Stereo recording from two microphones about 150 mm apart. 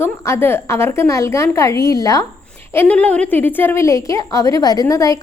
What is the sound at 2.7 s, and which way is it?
A child's voice, 10° left (ahead or behind).